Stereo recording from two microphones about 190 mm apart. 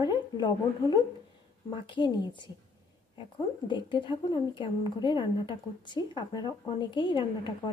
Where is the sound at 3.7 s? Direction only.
25° left (ahead or behind).